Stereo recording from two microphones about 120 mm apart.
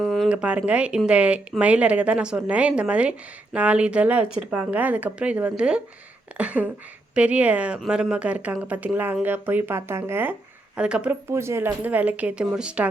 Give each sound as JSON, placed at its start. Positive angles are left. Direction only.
{"t": 0.0, "sound": "a sound", "side_deg": 5}
{"t": 0.3, "sound": "speech", "side_deg": -10}
{"t": 10.8, "sound": "speech", "side_deg": -10}
{"t": 11.3, "sound": "speech", "side_deg": -20}